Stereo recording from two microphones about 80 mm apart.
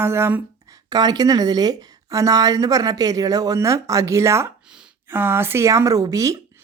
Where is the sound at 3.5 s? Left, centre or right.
Right.